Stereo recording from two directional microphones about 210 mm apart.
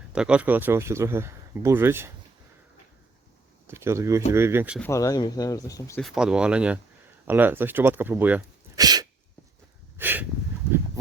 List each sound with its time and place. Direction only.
0.1 s speech: 5° right (ahead or behind)
3.7 s speech: 10° right (ahead or behind)
4.8 s speech: 15° left (ahead or behind)
6.0 s speech: centre (ahead or behind); by 9.0 s 20° right (ahead or behind)
10.0 s snort: 10° right (ahead or behind)